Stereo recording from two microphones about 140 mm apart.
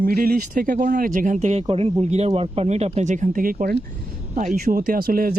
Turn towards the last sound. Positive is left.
turn(degrees=-90)